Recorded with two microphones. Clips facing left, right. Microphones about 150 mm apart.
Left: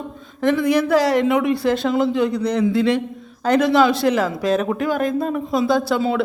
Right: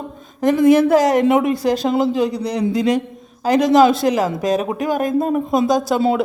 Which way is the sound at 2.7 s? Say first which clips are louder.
Right 3 dB; 20° right (ahead or behind).